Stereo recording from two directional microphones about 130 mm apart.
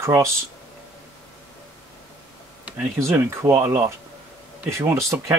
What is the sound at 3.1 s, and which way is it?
Speech, 20° right (ahead or behind).